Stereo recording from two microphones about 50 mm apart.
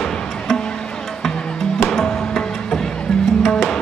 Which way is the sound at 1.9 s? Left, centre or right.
Centre.